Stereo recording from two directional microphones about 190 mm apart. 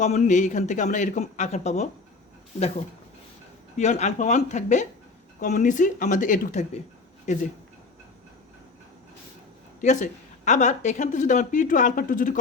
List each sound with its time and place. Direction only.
0.0 s a woman's voice: 40° left (ahead or behind)
3.8 s a woman's voice: 35° left (ahead or behind)
9.8 s a woman's voice: 40° left (ahead or behind)